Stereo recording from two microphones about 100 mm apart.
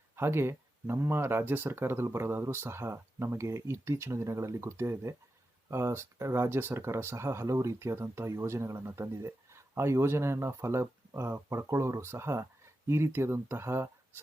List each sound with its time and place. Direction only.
0.2 s speech: 25° right (ahead or behind)